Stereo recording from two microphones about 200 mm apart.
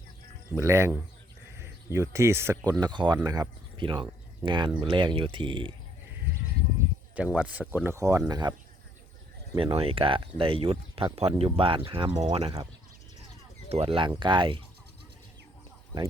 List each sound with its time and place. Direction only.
0.5 s speech: 15° right (ahead or behind)
7.3 s speech: 5° right (ahead or behind)
9.6 s speech: 25° right (ahead or behind)
13.7 s speech: 30° right (ahead or behind)